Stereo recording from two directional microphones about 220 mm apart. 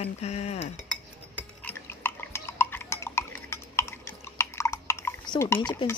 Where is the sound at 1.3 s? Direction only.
5° left (ahead or behind).